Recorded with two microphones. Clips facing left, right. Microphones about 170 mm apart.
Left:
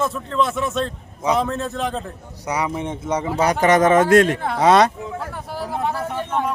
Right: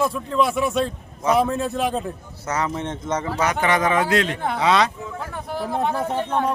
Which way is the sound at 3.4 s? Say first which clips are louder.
Left 6 dB; 40° left (ahead or behind).